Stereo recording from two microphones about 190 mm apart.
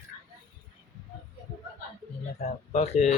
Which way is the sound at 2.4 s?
35° left (ahead or behind).